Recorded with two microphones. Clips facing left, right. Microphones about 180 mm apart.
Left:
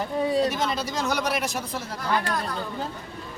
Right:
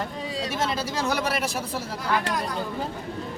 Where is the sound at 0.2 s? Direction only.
60° left (ahead or behind).